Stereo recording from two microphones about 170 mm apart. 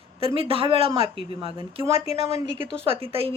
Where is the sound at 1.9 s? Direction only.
35° left (ahead or behind).